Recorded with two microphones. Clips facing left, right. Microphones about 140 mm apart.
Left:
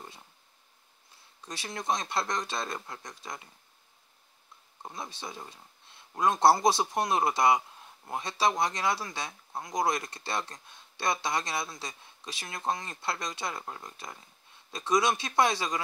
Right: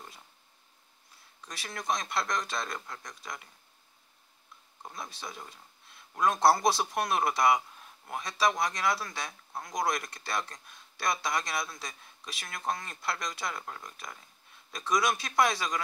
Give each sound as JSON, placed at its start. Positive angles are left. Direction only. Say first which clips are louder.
{"t": 1.4, "sound": "speech", "louder": "left 3 dB", "side_deg": 25}
{"t": 4.8, "sound": "speech", "louder": "left 2 dB", "side_deg": 25}